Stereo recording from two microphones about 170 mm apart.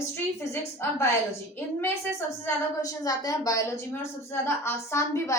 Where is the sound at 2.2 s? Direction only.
20° left (ahead or behind).